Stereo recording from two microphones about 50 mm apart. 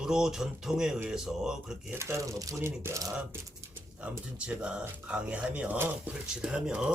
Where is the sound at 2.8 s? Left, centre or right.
Right.